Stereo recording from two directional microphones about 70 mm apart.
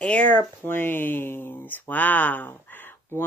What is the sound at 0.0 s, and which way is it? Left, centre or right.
Speech, centre.